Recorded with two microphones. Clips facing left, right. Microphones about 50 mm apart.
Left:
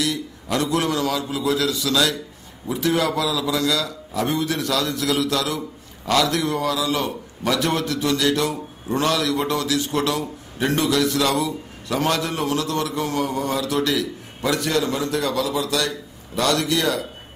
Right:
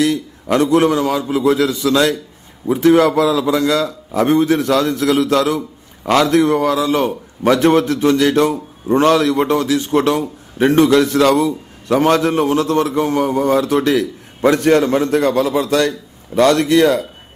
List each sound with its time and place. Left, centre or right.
0.0 s a man's voice: right